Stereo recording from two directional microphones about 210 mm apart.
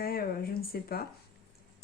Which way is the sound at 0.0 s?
45° left (ahead or behind).